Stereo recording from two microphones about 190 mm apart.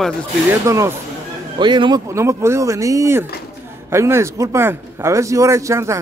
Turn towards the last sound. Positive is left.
turn(degrees=-15)  # may be behind; listen again after turning